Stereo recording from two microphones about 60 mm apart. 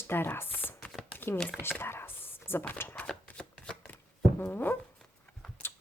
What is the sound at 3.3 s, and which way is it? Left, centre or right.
Shuffling cards, centre.